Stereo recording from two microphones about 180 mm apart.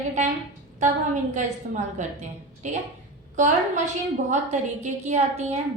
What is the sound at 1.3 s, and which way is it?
A woman's voice, 45° right (ahead or behind).